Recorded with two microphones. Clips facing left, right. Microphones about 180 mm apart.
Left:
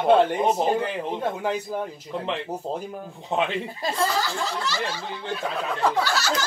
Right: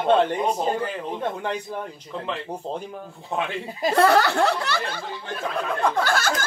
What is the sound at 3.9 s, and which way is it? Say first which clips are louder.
Speech: right 9 dB; 65° right (ahead or behind).